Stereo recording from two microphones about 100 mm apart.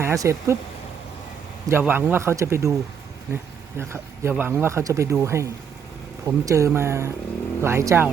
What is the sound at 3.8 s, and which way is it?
Speech, 25° right (ahead or behind).